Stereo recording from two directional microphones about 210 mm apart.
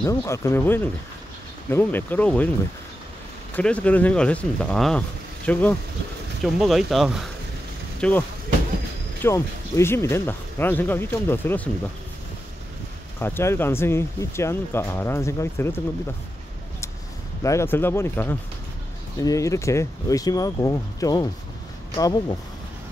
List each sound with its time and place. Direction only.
0.0 s speech: 15° left (ahead or behind)
3.5 s speech: 5° left (ahead or behind)
9.2 s speech: 10° left (ahead or behind)
13.2 s speech: 10° left (ahead or behind)
17.4 s speech: 15° left (ahead or behind)